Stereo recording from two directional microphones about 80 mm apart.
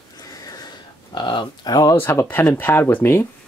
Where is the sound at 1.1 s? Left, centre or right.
Left.